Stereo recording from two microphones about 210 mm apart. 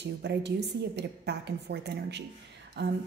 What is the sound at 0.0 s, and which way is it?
A woman's voice, 55° right (ahead or behind).